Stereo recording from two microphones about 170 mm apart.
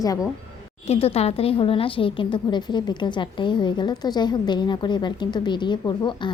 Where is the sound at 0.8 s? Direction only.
35° left (ahead or behind).